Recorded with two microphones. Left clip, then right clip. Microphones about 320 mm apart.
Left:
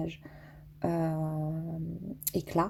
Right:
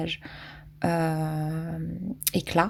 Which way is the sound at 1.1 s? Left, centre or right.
Right.